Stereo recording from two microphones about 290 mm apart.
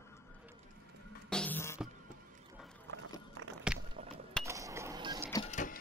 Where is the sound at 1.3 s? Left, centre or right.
Centre.